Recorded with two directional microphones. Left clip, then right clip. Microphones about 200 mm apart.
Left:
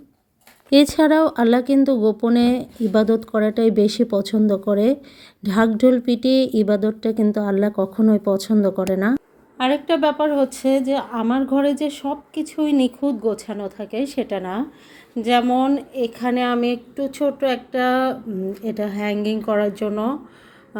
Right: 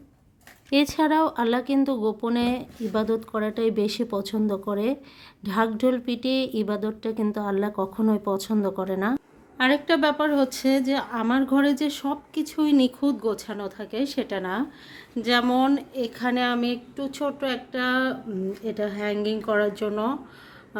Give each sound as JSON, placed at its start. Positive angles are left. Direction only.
{"t": 0.7, "sound": "speech", "side_deg": 20}
{"t": 9.1, "sound": "a woman's voice", "side_deg": -5}